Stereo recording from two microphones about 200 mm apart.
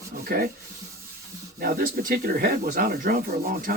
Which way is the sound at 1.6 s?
45° right (ahead or behind).